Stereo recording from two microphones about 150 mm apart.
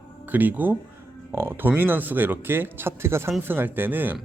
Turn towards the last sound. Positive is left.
turn(degrees=-10)  # may be behind; listen again after turning